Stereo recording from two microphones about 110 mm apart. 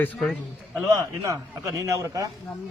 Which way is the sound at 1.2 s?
30° right (ahead or behind).